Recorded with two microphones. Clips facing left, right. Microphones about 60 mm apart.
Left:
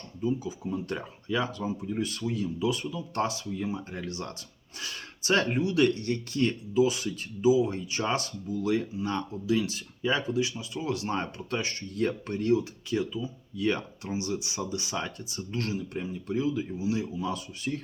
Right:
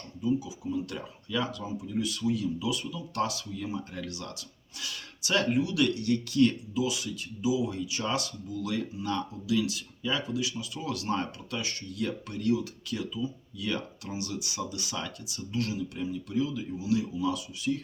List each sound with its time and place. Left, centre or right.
0.2 s speech: left